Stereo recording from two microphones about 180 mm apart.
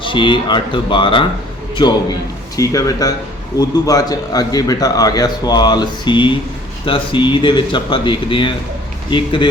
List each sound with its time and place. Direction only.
0.0 s a man's voice: 25° left (ahead or behind)
2.6 s a man's voice: 20° left (ahead or behind)